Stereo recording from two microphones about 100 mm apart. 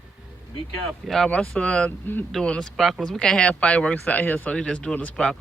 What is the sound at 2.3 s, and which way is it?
Speech, 10° left (ahead or behind).